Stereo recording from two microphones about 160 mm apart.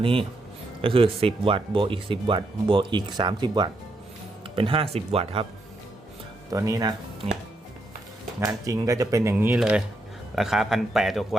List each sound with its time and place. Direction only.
0.0 s speech: 35° right (ahead or behind)
6.5 s speech: 20° right (ahead or behind)
8.4 s a man's voice: 20° right (ahead or behind); by 11.3 s centre (ahead or behind)